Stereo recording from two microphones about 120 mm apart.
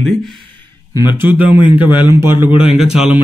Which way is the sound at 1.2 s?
15° right (ahead or behind).